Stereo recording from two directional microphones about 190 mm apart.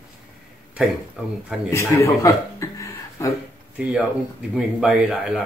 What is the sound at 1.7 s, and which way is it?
Speech, 15° left (ahead or behind).